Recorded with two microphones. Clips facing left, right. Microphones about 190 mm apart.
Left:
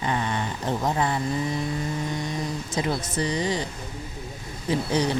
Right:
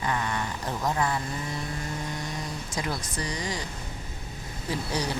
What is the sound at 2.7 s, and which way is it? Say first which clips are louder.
Speech: left 6 dB; 25° left (ahead or behind).